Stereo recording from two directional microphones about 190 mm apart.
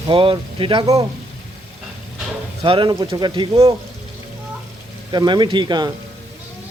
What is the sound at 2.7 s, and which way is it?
Speech, 25° right (ahead or behind).